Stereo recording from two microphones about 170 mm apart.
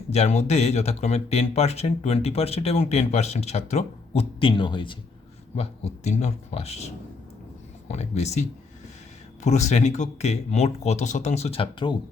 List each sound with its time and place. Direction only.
0.1 s speech: 40° left (ahead or behind)
5.5 s speech: 40° left (ahead or behind)